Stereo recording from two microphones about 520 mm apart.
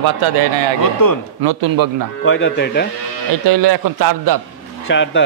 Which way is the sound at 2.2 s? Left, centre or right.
Left.